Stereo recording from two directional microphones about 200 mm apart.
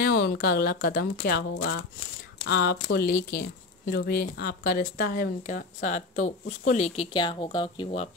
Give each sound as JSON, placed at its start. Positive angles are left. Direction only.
{"t": 0.0, "sound": "speech", "side_deg": 55}
{"t": 2.4, "sound": "speech", "side_deg": 55}